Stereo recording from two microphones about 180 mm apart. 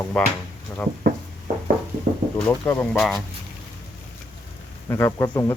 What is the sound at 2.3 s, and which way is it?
Speech, 10° left (ahead or behind).